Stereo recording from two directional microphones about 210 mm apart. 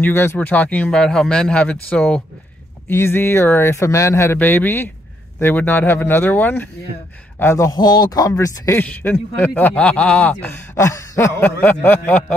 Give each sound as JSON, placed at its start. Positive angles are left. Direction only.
{"t": 0.0, "sound": "a man's voice", "side_deg": 10}